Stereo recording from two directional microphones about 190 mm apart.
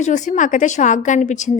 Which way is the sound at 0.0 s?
40° left (ahead or behind).